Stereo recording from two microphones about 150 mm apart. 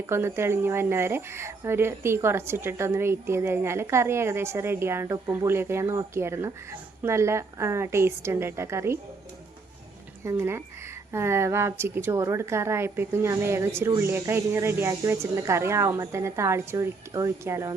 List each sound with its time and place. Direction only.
0.0 s speech: 15° right (ahead or behind)
10.2 s speech: 15° right (ahead or behind)